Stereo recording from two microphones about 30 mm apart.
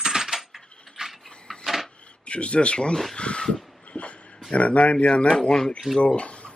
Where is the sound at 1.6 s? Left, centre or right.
Centre.